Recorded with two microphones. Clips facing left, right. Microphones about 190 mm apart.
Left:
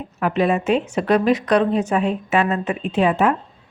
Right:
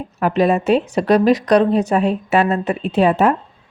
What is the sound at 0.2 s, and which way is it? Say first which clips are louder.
A woman's voice: right 3 dB; 40° right (ahead or behind).